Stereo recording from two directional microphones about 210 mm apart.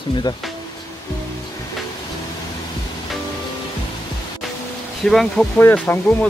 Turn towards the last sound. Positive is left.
turn(degrees=5)  # may be behind; listen again after turning